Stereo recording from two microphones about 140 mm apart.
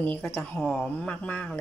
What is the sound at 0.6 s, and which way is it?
Speech, centre (ahead or behind).